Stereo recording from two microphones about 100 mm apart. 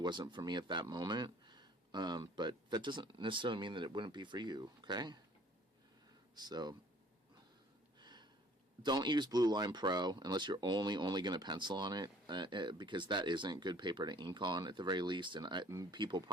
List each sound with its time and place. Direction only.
0.0 s speech: 50° right (ahead or behind)
6.3 s speech: 45° right (ahead or behind)
7.9 s a sound: 50° right (ahead or behind)
8.8 s speech: 45° right (ahead or behind)
15.7 s speech: 35° right (ahead or behind)
16.0 s speech: 50° right (ahead or behind)